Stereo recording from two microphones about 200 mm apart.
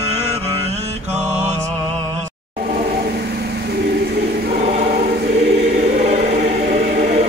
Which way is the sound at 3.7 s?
50° right (ahead or behind).